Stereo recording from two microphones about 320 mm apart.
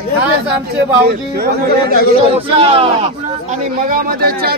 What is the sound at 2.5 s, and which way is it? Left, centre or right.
Speech, centre.